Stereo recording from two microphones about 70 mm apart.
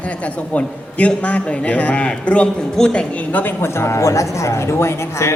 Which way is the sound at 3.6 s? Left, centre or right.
Left.